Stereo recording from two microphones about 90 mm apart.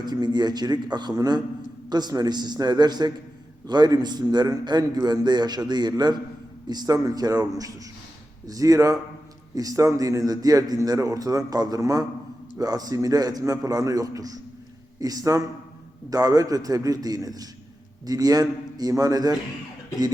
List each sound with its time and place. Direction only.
0.0 s a man's voice: 50° right (ahead or behind)